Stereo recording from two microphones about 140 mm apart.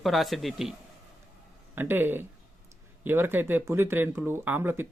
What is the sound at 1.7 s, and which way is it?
Speech, 15° right (ahead or behind).